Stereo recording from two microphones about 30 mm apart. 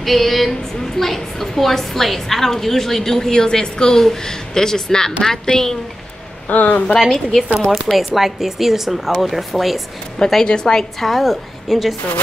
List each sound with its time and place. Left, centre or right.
0.0 s a woman's voice: centre
3.3 s a woman's voice: left
6.5 s speech: left
7.0 s speech: centre
7.9 s a woman's voice: left
8.2 s a woman's voice: centre
9.1 s speech: centre
10.1 s a woman's voice: centre
10.4 s a woman's voice: left
10.8 s a woman's voice: centre